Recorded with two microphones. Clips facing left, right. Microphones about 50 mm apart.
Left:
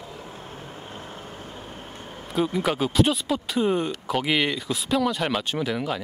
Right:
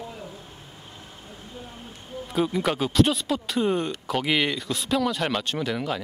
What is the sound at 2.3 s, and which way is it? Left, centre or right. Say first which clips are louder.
Speech: left 1 dB; centre.